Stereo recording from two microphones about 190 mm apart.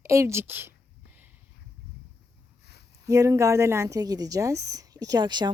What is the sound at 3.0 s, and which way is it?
A woman's voice, 15° right (ahead or behind).